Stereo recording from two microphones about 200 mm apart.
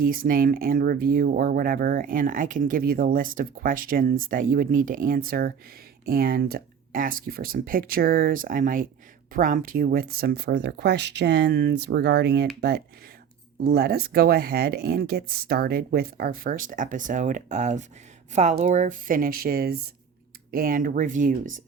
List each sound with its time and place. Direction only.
0.0 s speech: 45° right (ahead or behind)
13.7 s speech: 50° right (ahead or behind)